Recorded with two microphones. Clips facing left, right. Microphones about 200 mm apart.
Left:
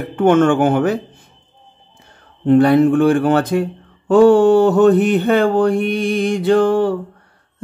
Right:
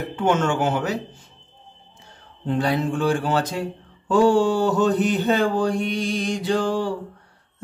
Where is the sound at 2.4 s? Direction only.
60° left (ahead or behind).